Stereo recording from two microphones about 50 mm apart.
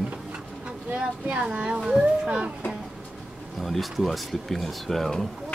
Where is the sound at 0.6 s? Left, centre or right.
Right.